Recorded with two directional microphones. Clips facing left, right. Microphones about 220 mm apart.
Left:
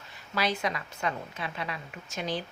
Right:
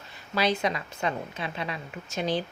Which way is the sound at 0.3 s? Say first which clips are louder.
Right 4 dB; 25° right (ahead or behind).